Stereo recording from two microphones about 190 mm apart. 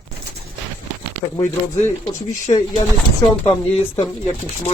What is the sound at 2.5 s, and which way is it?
Speech, 30° left (ahead or behind).